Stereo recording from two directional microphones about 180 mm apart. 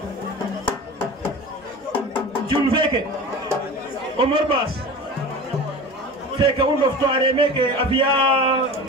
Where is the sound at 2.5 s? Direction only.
25° right (ahead or behind).